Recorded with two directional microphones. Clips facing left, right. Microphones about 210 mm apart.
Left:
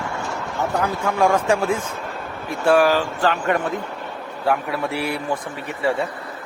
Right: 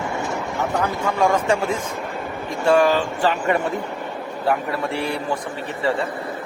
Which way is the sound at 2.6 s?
5° left (ahead or behind).